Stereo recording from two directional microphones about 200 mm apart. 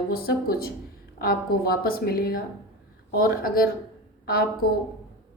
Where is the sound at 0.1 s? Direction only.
50° left (ahead or behind).